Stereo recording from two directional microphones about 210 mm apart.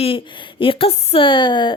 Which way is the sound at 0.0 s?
25° left (ahead or behind).